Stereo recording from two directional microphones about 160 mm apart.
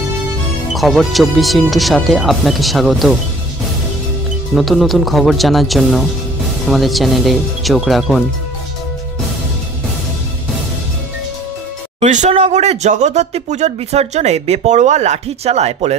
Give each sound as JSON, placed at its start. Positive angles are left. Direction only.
{"t": 0.7, "sound": "speech", "side_deg": 0}
{"t": 4.6, "sound": "speech", "side_deg": 0}
{"t": 12.0, "sound": "speech", "side_deg": -45}